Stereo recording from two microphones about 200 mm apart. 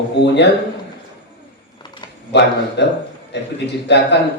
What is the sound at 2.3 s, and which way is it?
A man's voice, 60° left (ahead or behind).